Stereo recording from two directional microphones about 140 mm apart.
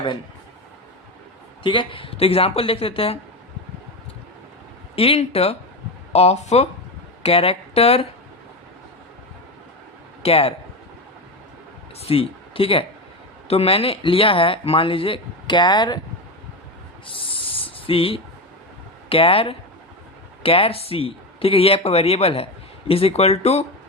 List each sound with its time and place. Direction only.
1.6 s speech: 35° left (ahead or behind)
4.9 s speech: 45° left (ahead or behind)
10.2 s speech: 45° left (ahead or behind)
11.9 s speech: 45° left (ahead or behind)
17.2 s a sound: 40° left (ahead or behind)
19.0 s speech: 40° left (ahead or behind)